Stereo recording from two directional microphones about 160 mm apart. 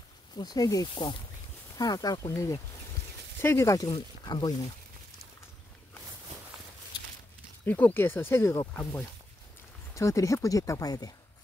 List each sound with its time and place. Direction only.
0.4 s speech: 25° left (ahead or behind)
7.6 s speech: 10° left (ahead or behind)